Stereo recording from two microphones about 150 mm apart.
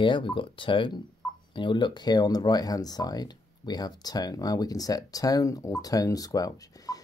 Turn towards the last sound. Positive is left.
turn(degrees=25)  # may be behind; listen again after turning